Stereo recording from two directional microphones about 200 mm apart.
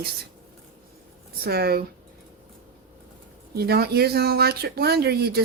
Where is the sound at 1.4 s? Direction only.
50° right (ahead or behind).